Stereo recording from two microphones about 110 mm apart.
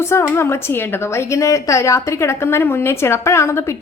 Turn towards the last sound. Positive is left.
turn(degrees=25)  # may be behind; listen again after turning